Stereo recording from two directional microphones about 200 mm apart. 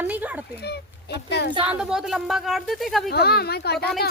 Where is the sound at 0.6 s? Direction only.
55° left (ahead or behind).